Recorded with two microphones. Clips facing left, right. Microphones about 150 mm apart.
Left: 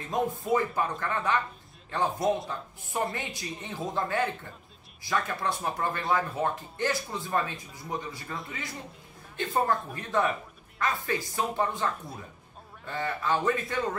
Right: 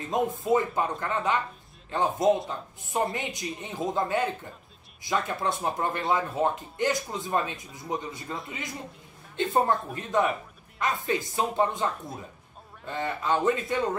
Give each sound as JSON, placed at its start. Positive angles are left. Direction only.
{"t": 0.1, "sound": "speech", "side_deg": -20}